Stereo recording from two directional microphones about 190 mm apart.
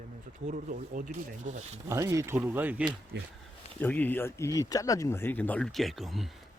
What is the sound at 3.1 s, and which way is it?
Speech, 60° right (ahead or behind).